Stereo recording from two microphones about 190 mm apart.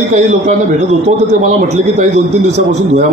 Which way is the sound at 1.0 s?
35° right (ahead or behind).